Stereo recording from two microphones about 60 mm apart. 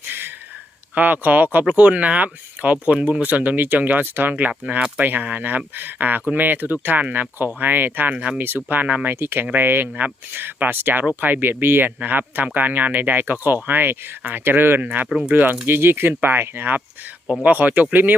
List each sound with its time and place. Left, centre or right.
0.9 s speech: right
8.1 s speech: centre
8.4 s speech: right